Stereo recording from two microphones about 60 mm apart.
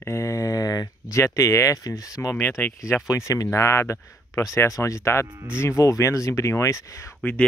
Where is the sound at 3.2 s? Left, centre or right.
Left.